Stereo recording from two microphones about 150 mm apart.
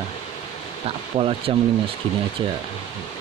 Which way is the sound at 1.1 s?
35° right (ahead or behind).